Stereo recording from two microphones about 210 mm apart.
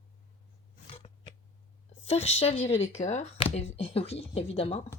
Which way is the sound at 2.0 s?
30° left (ahead or behind).